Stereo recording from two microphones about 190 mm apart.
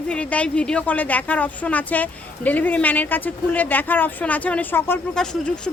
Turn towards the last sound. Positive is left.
turn(degrees=5)  # may be behind; listen again after turning